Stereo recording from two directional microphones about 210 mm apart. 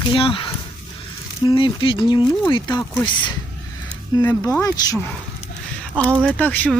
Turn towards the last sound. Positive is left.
turn(degrees=5)  # may be behind; listen again after turning